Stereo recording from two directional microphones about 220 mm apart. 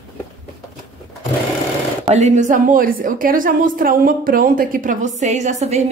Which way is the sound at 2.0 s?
30° right (ahead or behind).